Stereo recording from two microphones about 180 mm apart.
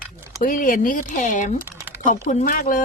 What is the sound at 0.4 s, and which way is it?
Speech, 50° left (ahead or behind).